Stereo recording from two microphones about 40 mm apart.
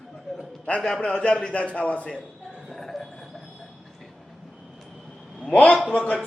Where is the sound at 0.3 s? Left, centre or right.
Centre.